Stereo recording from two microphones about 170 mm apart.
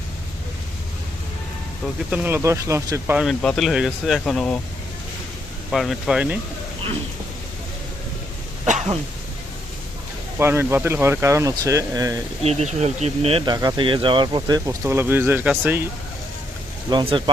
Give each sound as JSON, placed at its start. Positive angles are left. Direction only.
{"t": 2.0, "sound": "speech", "side_deg": -10}
{"t": 3.2, "sound": "speech", "side_deg": 5}
{"t": 5.7, "sound": "speech", "side_deg": 0}
{"t": 8.6, "sound": "a sound", "side_deg": -45}
{"t": 10.3, "sound": "speech", "side_deg": -15}
{"t": 12.4, "sound": "speech", "side_deg": -40}
{"t": 16.9, "sound": "speech", "side_deg": -30}